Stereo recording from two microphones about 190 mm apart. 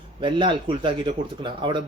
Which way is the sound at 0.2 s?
25° right (ahead or behind).